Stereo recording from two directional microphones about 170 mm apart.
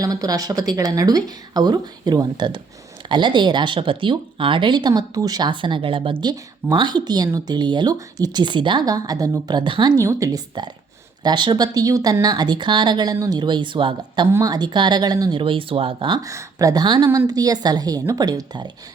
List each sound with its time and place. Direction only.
0.0 s speech: 20° right (ahead or behind)